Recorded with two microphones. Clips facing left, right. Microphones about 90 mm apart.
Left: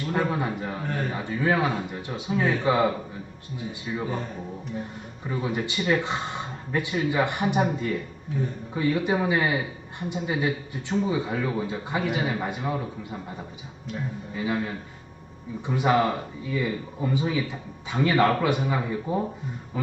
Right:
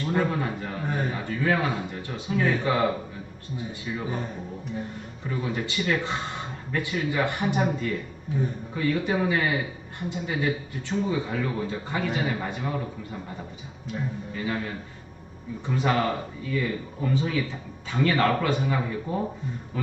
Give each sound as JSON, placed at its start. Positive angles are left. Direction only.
{"t": 0.1, "sound": "speech", "side_deg": 15}
{"t": 5.3, "sound": "speech", "side_deg": 15}
{"t": 8.3, "sound": "speech", "side_deg": 0}
{"t": 8.7, "sound": "speech", "side_deg": 15}
{"t": 13.8, "sound": "speech", "side_deg": 5}